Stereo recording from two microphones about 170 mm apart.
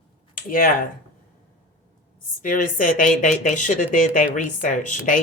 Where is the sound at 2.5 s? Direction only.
55° left (ahead or behind).